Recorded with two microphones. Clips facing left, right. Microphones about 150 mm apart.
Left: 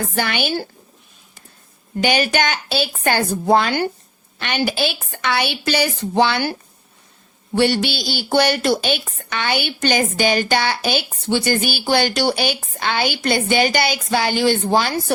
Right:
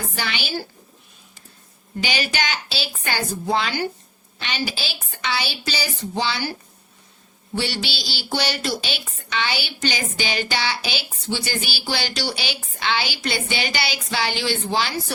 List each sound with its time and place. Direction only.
0.1 s a woman's voice: 50° left (ahead or behind)
2.0 s a woman's voice: 50° left (ahead or behind)